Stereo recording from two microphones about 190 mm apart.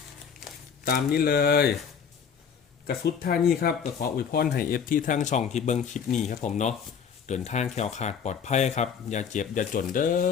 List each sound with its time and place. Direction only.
0.9 s speech: 50° left (ahead or behind)
2.8 s speech: 55° left (ahead or behind)